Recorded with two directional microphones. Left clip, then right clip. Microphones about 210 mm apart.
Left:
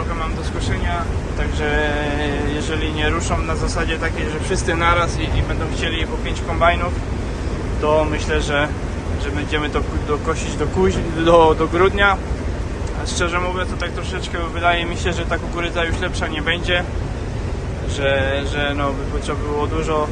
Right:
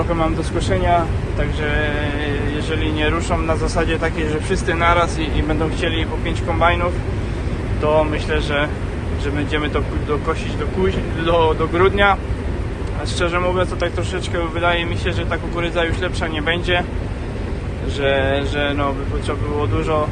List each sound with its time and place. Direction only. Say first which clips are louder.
1.4 s speech: left 1 dB; 15° left (ahead or behind)
4.4 s speech: even; 10° left (ahead or behind)
10.8 s speech: left 3 dB; 25° left (ahead or behind)
13.1 s speech: right 3 dB; 10° left (ahead or behind)
18.0 s speech: right 1 dB; 5° left (ahead or behind)